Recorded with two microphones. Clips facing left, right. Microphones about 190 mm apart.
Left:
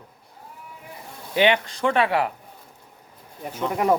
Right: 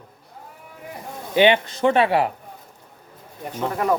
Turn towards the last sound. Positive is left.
turn(degrees=20)  # may be behind; listen again after turning